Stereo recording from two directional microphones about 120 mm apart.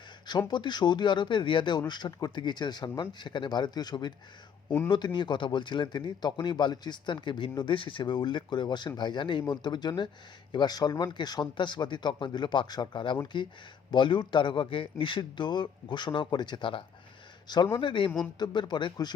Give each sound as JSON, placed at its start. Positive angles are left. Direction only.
{"t": 0.3, "sound": "a man's voice", "side_deg": 40}